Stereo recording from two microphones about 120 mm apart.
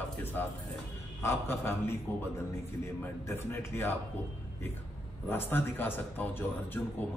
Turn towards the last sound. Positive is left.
turn(degrees=15)  # may be behind; listen again after turning